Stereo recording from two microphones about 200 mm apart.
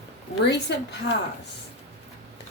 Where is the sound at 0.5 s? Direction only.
60° left (ahead or behind).